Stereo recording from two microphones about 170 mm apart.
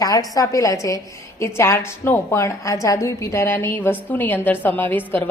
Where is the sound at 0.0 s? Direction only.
20° left (ahead or behind).